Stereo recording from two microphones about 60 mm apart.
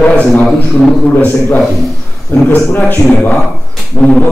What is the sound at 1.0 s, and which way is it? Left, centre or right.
A man's voice, left.